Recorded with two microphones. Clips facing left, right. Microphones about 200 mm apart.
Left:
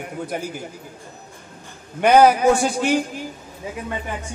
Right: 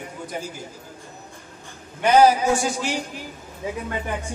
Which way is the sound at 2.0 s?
60° left (ahead or behind).